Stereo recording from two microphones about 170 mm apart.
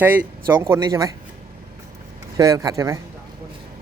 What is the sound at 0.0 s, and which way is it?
Speech, 10° right (ahead or behind).